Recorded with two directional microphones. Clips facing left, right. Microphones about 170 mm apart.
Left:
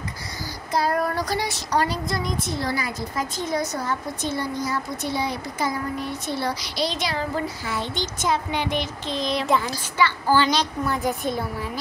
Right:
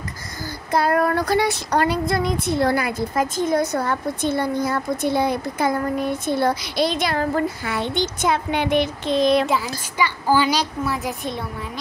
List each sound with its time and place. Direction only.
0.7 s child singing: 60° right (ahead or behind)
9.9 s a woman's voice: 15° right (ahead or behind)